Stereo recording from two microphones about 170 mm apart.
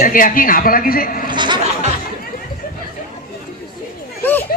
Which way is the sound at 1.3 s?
25° right (ahead or behind).